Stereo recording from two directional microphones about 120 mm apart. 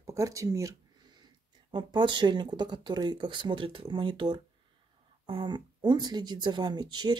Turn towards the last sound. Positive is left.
turn(degrees=-35)  # may be behind; listen again after turning